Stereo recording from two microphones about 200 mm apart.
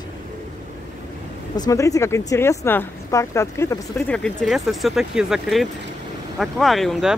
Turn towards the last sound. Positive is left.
turn(degrees=0)  # may be behind; listen again after turning